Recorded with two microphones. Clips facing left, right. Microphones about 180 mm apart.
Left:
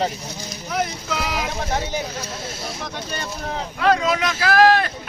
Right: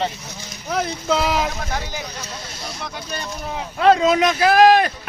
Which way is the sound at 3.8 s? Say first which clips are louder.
Right 5 dB; 25° right (ahead or behind).